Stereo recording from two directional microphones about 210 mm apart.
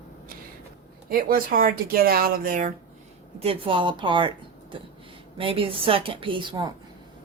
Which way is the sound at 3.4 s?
25° right (ahead or behind).